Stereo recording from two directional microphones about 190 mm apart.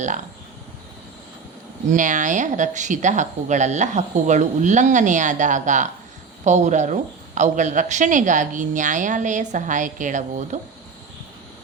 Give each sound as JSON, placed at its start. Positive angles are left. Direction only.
{"t": 1.9, "sound": "a woman's voice", "side_deg": -40}